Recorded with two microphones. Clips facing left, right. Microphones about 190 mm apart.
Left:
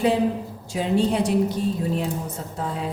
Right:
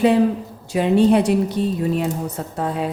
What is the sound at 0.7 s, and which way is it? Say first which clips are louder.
Speech: right 7 dB; 65° right (ahead or behind).